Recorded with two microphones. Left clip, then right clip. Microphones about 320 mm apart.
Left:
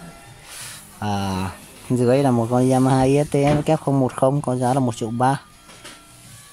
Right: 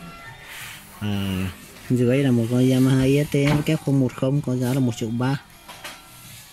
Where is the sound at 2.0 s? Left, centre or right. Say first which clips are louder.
Left 4 dB; left.